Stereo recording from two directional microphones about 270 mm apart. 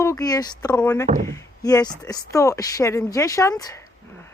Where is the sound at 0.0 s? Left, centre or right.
Centre.